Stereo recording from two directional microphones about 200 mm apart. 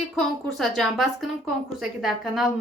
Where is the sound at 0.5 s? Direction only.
Centre (ahead or behind).